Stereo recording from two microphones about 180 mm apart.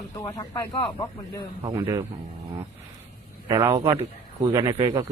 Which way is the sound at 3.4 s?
15° right (ahead or behind).